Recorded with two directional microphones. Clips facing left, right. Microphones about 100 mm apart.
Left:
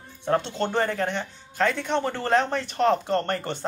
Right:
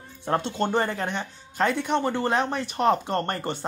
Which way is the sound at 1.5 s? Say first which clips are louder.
Even; 15° right (ahead or behind).